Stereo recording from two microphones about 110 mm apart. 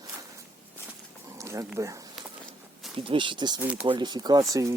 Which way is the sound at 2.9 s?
55° right (ahead or behind).